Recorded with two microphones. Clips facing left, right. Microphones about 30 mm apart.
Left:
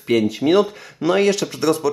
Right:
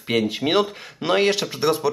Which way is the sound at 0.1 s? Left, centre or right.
Right.